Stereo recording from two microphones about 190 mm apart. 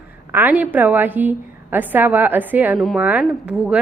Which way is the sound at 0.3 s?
10° right (ahead or behind).